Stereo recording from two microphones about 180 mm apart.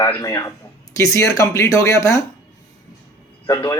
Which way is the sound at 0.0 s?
20° left (ahead or behind).